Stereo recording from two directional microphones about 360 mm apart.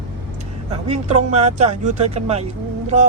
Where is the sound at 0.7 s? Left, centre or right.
Centre.